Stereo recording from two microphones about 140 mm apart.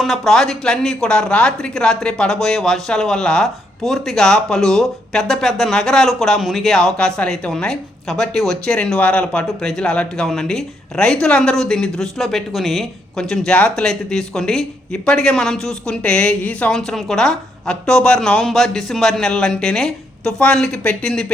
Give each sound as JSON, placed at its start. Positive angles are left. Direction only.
{"t": 0.0, "sound": "speech", "side_deg": 0}